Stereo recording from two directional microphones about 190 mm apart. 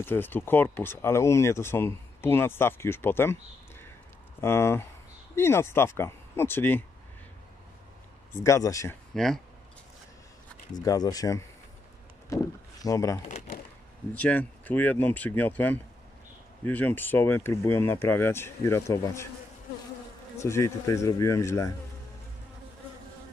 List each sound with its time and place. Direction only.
0.0 s speech: 10° left (ahead or behind)
4.4 s speech: 15° left (ahead or behind)
8.3 s speech: 15° left (ahead or behind)
9.1 s speech: centre (ahead or behind)
10.8 s speech: 20° left (ahead or behind)
20.3 s speech: 15° left (ahead or behind)